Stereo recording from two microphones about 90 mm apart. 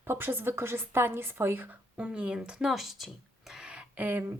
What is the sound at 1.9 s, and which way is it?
Speech, 10° right (ahead or behind).